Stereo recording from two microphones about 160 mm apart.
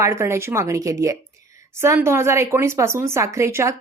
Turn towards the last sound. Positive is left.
turn(degrees=-15)  # may be behind; listen again after turning